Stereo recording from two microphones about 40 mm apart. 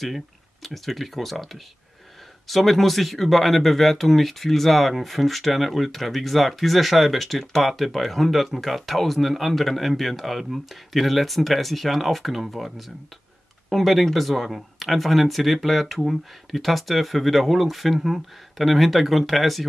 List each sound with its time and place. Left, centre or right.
0.0 s speech: centre